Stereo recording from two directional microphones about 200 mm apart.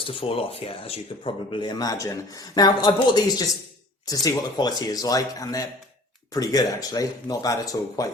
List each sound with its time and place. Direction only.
0.0 s speech: 25° left (ahead or behind)